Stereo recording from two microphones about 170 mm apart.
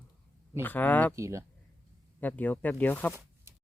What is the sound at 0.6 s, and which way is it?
Speech, 10° left (ahead or behind).